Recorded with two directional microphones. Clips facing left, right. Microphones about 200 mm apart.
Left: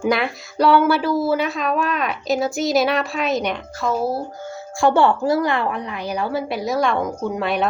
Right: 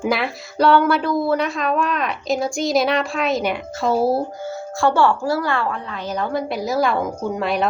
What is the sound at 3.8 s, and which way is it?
Speech, 30° right (ahead or behind).